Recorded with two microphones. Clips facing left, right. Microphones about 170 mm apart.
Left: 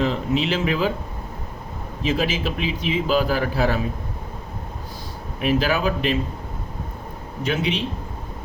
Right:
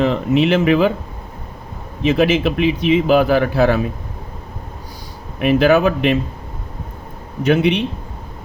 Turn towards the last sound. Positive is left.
turn(degrees=-60)  # may be behind; listen again after turning